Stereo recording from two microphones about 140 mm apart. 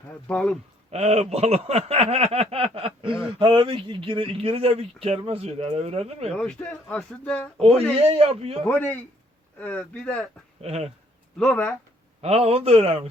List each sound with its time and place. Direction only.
0.3 s speech: 5° left (ahead or behind)
0.9 s speech: 50° right (ahead or behind)
6.3 s speech: 10° left (ahead or behind)
7.9 s speech: 45° right (ahead or behind)
8.6 s speech: 10° left (ahead or behind)
10.6 s speech: 50° right (ahead or behind)
11.3 s speech: 10° left (ahead or behind)
12.2 s speech: 45° right (ahead or behind)